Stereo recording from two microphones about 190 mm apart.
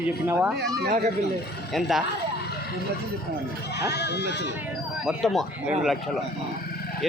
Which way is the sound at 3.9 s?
60° left (ahead or behind).